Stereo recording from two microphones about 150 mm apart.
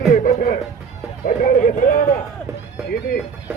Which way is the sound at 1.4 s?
65° left (ahead or behind).